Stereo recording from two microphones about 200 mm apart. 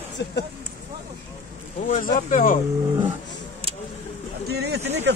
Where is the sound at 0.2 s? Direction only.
60° left (ahead or behind).